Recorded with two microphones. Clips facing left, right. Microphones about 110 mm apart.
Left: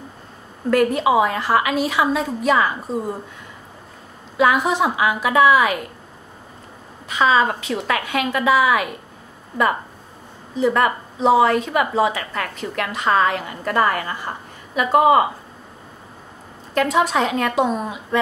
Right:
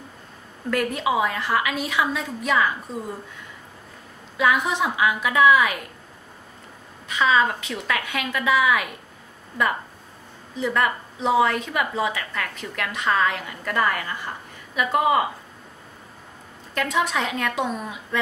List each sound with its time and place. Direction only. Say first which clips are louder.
0.7 s a woman's voice: left 7 dB; 35° left (ahead or behind)
4.4 s a woman's voice: left 4 dB; 35° left (ahead or behind)
7.2 s a woman's voice: left 3 dB; 35° left (ahead or behind)
10.6 s a woman's voice: left 5 dB; 35° left (ahead or behind)
16.7 s a woman's voice: left 6 dB; 35° left (ahead or behind)